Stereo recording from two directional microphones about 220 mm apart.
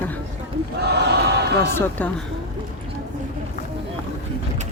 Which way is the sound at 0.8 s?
50° right (ahead or behind).